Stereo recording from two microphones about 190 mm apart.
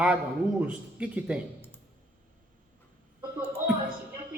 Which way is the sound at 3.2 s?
5° right (ahead or behind).